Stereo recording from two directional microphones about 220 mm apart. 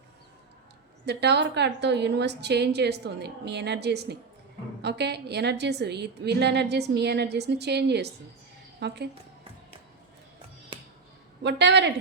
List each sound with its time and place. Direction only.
1.0 s a woman's voice: 50° right (ahead or behind)
11.4 s a woman's voice: 50° right (ahead or behind)